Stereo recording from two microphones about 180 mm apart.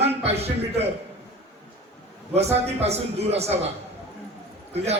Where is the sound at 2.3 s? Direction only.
35° right (ahead or behind).